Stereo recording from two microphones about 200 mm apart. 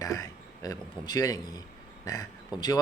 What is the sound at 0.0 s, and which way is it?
A man's voice, 15° left (ahead or behind).